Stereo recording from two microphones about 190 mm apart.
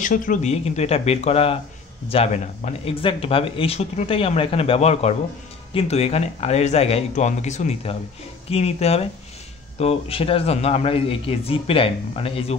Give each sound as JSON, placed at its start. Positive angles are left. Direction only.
{"t": 0.0, "sound": "speech", "side_deg": 45}